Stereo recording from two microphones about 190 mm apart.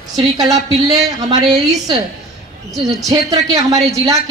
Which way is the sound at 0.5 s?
35° right (ahead or behind).